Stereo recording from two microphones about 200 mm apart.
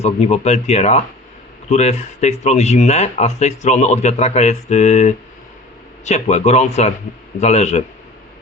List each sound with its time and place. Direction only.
0.0 s speech: 30° left (ahead or behind)